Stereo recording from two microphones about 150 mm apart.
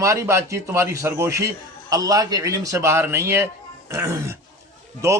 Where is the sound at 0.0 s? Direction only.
20° right (ahead or behind).